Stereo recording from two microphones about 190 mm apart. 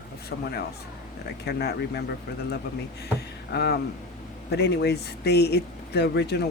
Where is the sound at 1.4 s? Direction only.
60° left (ahead or behind).